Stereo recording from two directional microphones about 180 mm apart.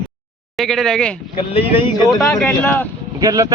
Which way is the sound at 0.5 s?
Centre (ahead or behind).